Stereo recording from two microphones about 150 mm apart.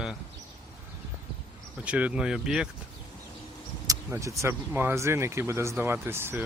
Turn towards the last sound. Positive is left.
turn(degrees=-15)  # may be behind; listen again after turning